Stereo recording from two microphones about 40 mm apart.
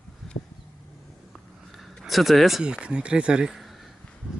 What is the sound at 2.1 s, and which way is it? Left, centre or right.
Speech, centre.